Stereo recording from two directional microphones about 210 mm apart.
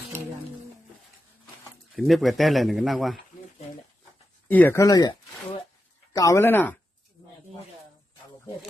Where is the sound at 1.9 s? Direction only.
Centre (ahead or behind).